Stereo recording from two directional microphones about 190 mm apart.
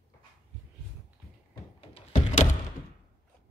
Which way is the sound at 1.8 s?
30° left (ahead or behind).